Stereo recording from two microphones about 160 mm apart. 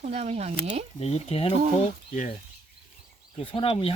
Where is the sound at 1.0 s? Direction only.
40° left (ahead or behind).